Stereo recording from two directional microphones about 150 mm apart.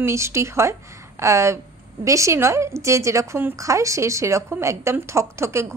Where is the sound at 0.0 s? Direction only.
20° right (ahead or behind).